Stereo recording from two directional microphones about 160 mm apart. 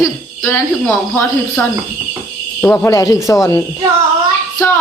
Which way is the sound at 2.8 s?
20° left (ahead or behind).